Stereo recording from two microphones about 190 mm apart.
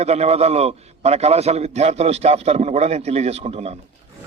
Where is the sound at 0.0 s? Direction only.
35° right (ahead or behind).